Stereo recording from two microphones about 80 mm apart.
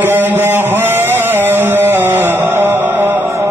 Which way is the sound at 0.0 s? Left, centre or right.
Right.